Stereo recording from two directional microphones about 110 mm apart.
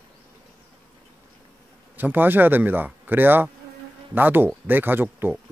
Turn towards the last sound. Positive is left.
turn(degrees=-20)  # may be behind; listen again after turning